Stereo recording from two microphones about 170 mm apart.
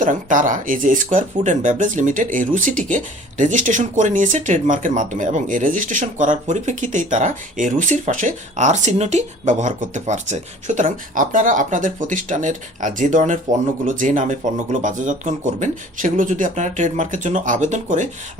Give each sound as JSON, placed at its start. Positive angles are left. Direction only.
{"t": 0.0, "sound": "speech", "side_deg": -50}